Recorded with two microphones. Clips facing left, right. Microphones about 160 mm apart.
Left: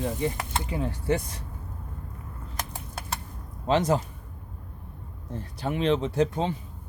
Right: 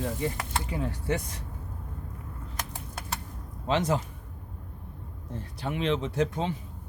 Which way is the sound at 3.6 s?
40° left (ahead or behind).